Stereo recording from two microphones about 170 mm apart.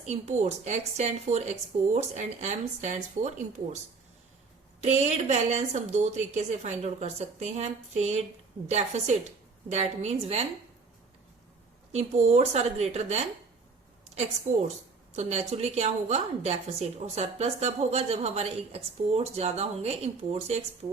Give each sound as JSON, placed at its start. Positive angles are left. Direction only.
{"t": 0.0, "sound": "a woman's voice", "side_deg": -40}
{"t": 4.8, "sound": "a woman's voice", "side_deg": -40}
{"t": 11.9, "sound": "a woman's voice", "side_deg": -40}
{"t": 14.5, "sound": "a woman's voice", "side_deg": -45}